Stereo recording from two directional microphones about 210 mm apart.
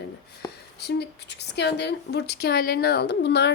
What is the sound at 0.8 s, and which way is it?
A woman's voice, 50° left (ahead or behind).